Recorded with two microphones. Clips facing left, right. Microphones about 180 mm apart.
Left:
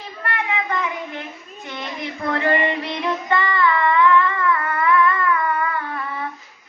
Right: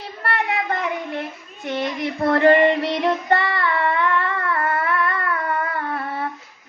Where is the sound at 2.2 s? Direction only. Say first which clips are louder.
Right 6 dB; 50° right (ahead or behind).